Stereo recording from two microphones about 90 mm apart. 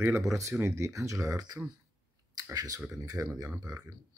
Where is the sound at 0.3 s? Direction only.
35° right (ahead or behind).